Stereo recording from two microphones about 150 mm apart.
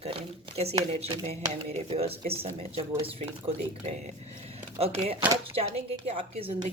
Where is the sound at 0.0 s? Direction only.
40° right (ahead or behind).